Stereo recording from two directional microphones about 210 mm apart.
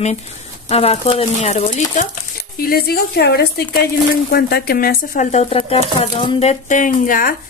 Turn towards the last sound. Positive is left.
turn(degrees=40)  # may be behind; listen again after turning